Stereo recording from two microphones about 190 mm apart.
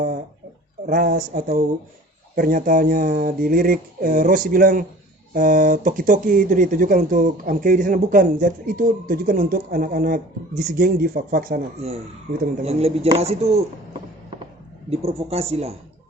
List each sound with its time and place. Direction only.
0.9 s speech: 50° right (ahead or behind)
12.6 s speech: 30° right (ahead or behind)
14.8 s speech: 35° right (ahead or behind)